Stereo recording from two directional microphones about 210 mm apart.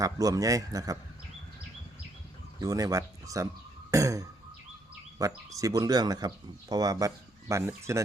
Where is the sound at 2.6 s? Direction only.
15° right (ahead or behind).